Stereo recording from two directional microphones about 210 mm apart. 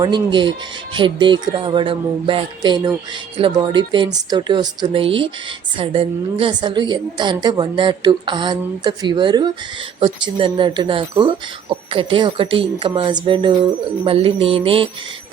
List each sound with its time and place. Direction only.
0.0 s a woman's voice: 20° right (ahead or behind)